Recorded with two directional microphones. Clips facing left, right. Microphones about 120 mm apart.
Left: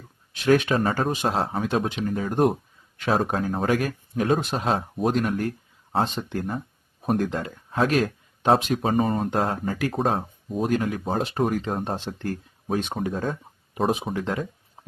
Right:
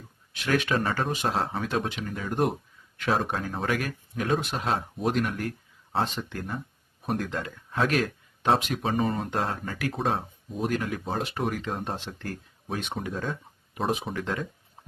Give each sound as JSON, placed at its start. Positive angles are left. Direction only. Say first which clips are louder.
{"t": 0.3, "sound": "speech", "louder": "left 6 dB", "side_deg": 30}
{"t": 1.1, "sound": "speech", "louder": "left 3 dB", "side_deg": 25}
{"t": 2.3, "sound": "speech", "louder": "left 3 dB", "side_deg": 25}
{"t": 3.7, "sound": "speech", "louder": "left 5 dB", "side_deg": 30}
{"t": 7.7, "sound": "a sound", "louder": "left 4 dB", "side_deg": 25}
{"t": 8.4, "sound": "speech", "louder": "left 4 dB", "side_deg": 35}
{"t": 14.1, "sound": "speech", "louder": "left 4 dB", "side_deg": 25}